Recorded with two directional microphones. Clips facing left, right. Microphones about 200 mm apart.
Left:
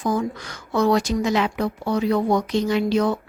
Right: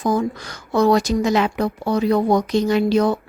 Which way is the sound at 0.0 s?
35° right (ahead or behind).